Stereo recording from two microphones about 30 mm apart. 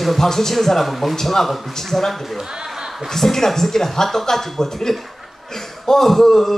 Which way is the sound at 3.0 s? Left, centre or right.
Centre.